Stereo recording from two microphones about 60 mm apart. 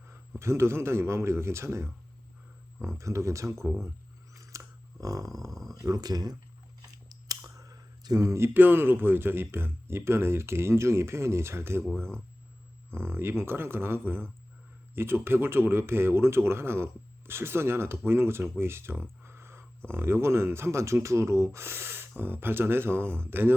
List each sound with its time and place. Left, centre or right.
0.0 s a man's voice: right
4.4 s a sound: right
8.5 s speech: right
12.9 s speech: right
19.2 s a sound: right
19.9 s speech: right